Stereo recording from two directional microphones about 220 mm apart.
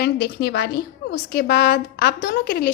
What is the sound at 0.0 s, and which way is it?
A woman's voice, 45° left (ahead or behind).